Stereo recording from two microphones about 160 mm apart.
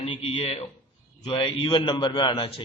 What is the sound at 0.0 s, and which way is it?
A man's voice, 35° left (ahead or behind).